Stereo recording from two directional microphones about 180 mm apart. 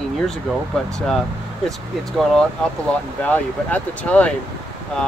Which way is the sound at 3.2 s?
10° left (ahead or behind).